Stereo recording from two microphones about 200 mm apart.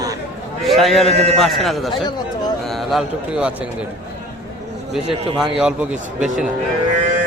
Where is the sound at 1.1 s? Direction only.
30° right (ahead or behind).